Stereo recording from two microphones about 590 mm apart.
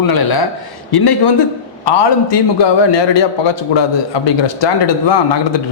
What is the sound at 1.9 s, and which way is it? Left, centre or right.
A man's voice, left.